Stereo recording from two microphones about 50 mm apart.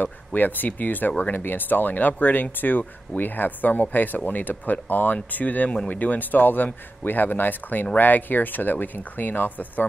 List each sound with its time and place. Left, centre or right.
0.0 s speech: left